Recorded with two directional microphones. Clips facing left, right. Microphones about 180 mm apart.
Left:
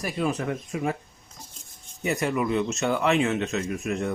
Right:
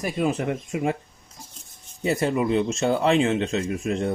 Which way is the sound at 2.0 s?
30° right (ahead or behind).